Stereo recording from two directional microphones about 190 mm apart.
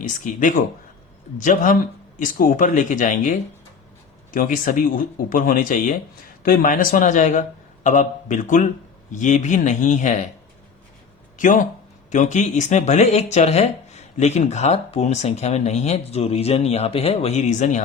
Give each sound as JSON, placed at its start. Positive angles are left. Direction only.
{"t": 0.0, "sound": "speech", "side_deg": 45}
{"t": 11.3, "sound": "speech", "side_deg": 40}